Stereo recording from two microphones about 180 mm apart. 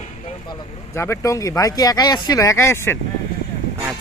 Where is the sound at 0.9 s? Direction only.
15° left (ahead or behind).